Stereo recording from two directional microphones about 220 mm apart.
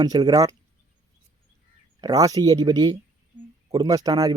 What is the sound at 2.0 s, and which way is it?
Speech, 15° right (ahead or behind).